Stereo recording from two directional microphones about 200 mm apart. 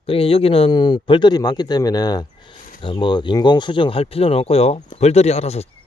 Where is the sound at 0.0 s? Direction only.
30° left (ahead or behind).